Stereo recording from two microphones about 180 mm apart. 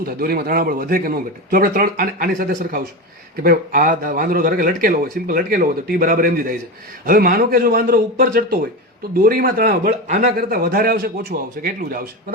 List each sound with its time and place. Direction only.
0.0 s speech: 55° right (ahead or behind)